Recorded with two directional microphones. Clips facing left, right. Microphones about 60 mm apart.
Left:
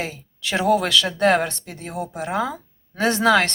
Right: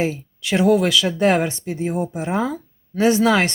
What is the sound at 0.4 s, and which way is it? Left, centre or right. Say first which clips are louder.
Speech: right 3 dB; centre.